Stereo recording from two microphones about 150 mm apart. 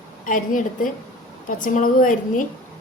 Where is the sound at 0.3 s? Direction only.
65° left (ahead or behind).